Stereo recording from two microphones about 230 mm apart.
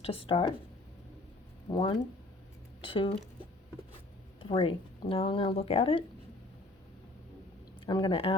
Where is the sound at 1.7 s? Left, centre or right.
Left.